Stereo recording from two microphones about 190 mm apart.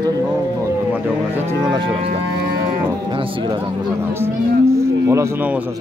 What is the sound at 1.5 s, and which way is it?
Cattle, 20° right (ahead or behind).